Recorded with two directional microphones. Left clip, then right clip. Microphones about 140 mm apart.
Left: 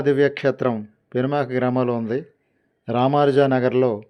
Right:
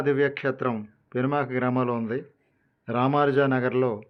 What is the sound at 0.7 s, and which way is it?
Speech, 35° left (ahead or behind).